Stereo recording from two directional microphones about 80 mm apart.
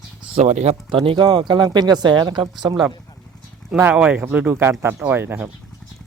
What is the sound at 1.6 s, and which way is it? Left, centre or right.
Speech, right.